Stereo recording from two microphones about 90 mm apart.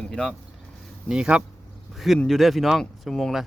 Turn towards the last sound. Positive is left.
turn(degrees=0)  # may be behind; listen again after turning